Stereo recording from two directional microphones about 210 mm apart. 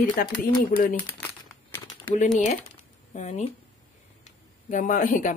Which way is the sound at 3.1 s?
35° left (ahead or behind).